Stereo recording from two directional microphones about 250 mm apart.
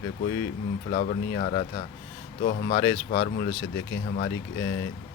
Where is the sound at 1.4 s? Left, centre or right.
Left.